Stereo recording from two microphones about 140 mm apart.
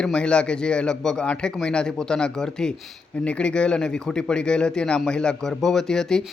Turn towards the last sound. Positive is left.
turn(degrees=5)  # may be behind; listen again after turning